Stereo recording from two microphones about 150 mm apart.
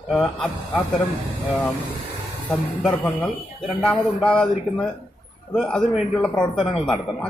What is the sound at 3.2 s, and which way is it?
A man's voice, 5° left (ahead or behind).